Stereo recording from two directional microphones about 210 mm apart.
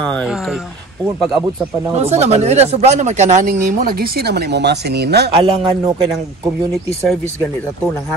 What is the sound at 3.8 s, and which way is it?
Speech, 45° right (ahead or behind).